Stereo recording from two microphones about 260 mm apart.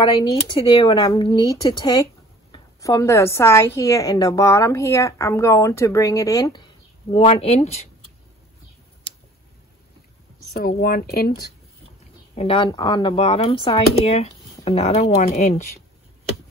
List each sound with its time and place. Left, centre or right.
0.0 s speech: centre
10.5 s speech: left
12.4 s speech: centre